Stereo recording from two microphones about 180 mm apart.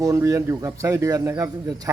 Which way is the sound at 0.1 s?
15° right (ahead or behind).